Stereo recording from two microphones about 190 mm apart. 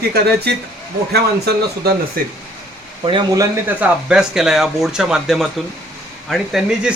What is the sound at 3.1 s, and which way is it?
Speech, 20° right (ahead or behind).